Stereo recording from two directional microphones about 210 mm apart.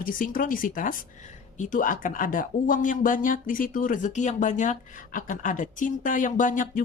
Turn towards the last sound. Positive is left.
turn(degrees=40)  # may be behind; listen again after turning